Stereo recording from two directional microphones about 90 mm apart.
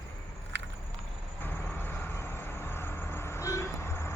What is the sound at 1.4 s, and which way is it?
Vehicle, 20° left (ahead or behind).